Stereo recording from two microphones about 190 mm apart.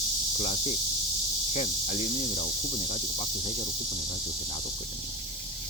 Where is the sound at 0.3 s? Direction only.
35° left (ahead or behind).